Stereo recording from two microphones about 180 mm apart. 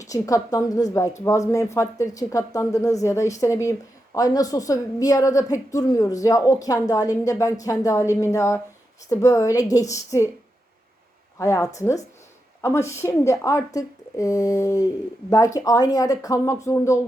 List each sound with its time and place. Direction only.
0.0 s a woman's voice: 20° left (ahead or behind)
11.3 s a woman's voice: 15° left (ahead or behind)